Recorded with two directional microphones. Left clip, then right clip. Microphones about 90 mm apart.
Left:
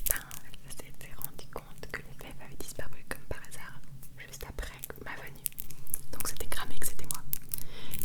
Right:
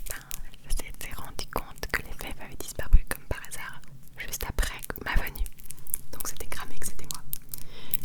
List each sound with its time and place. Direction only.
0.1 s whispering: 5° left (ahead or behind)
0.7 s whispering: 20° right (ahead or behind)
4.2 s whispering: 35° right (ahead or behind)
6.1 s whispering: 10° right (ahead or behind)